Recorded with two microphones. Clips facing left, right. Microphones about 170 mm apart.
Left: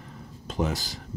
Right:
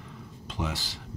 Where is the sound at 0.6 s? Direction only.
40° left (ahead or behind).